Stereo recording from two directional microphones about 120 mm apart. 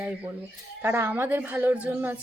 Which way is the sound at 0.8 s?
20° right (ahead or behind).